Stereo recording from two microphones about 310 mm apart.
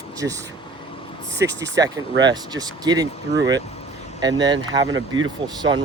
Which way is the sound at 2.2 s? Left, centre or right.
Centre.